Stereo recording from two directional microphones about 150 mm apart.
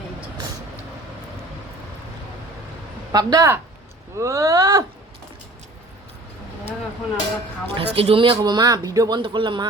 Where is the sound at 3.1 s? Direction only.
25° right (ahead or behind).